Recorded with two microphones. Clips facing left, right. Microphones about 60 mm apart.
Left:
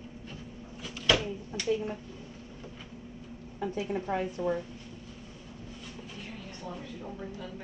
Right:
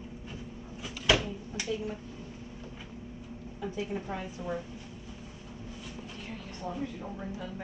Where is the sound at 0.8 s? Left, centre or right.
Centre.